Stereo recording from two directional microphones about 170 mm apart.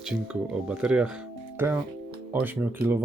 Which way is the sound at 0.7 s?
5° right (ahead or behind).